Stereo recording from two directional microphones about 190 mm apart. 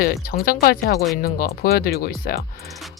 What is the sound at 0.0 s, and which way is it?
Speech, 50° left (ahead or behind).